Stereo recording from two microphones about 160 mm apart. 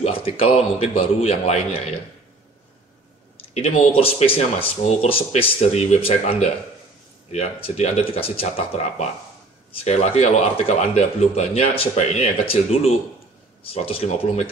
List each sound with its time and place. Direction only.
0.0 s speech: 35° left (ahead or behind)
3.5 s speech: 40° left (ahead or behind)